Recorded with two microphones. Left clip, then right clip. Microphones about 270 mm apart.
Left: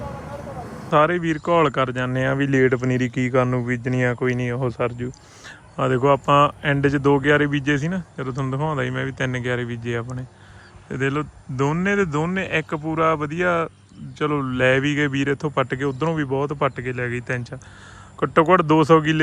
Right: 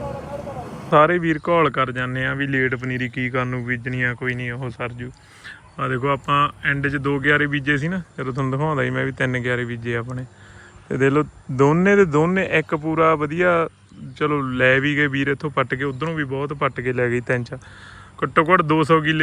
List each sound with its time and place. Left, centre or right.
0.9 s speech: centre